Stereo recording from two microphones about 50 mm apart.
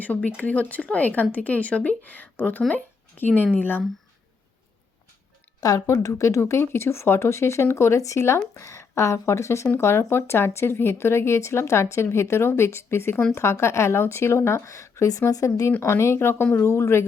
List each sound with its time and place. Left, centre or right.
0.3 s speech: left
5.8 s a woman's voice: left
6.6 s speech: left
9.7 s a woman's voice: left
13.3 s a woman's voice: left
15.8 s a woman's voice: left
16.6 s speech: left